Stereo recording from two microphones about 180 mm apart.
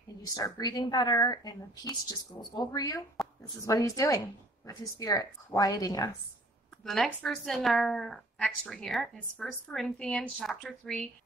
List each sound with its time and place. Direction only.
0.2 s speech: 20° left (ahead or behind)
3.2 s a sound: centre (ahead or behind)
3.6 s speech: 20° left (ahead or behind)
6.8 s speech: centre (ahead or behind)